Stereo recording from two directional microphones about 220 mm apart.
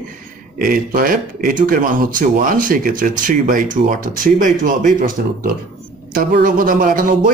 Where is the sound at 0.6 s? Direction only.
40° right (ahead or behind).